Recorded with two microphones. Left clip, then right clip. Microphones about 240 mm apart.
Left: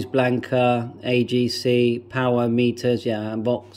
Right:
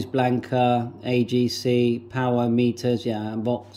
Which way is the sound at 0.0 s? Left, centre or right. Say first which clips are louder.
Left 2 dB; centre.